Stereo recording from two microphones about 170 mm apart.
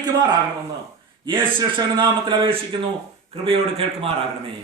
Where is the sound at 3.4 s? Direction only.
35° right (ahead or behind).